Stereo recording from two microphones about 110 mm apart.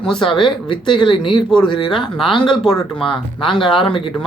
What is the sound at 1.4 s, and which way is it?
Speech, 5° left (ahead or behind).